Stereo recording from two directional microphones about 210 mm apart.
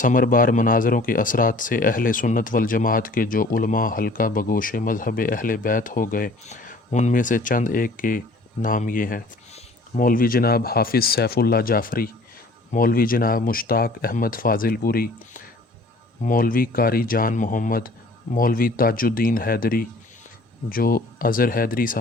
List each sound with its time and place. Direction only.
0.0 s speech: 40° left (ahead or behind)